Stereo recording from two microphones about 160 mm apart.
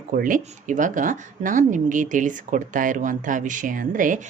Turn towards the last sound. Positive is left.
turn(degrees=-55)  # may be behind; listen again after turning